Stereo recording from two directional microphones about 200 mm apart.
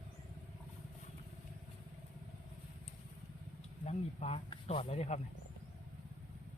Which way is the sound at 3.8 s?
30° left (ahead or behind).